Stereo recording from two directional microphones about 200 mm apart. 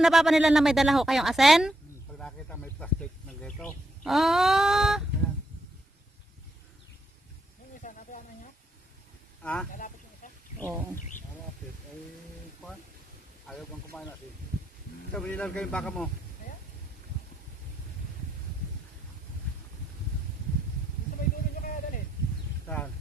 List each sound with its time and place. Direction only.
0.0 s a woman's voice: centre (ahead or behind)
2.1 s bird: 5° left (ahead or behind)
7.8 s snake: 40° left (ahead or behind)
9.4 s speech: 5° left (ahead or behind)
13.5 s a sound: centre (ahead or behind)
15.1 s a woman's voice: 5° left (ahead or behind)
22.6 s a sound: 10° left (ahead or behind)